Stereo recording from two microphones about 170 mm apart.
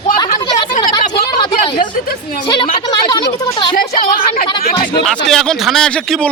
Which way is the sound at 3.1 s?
20° left (ahead or behind).